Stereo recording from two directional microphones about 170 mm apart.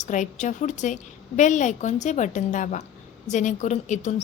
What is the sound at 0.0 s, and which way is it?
A woman's voice, 45° left (ahead or behind).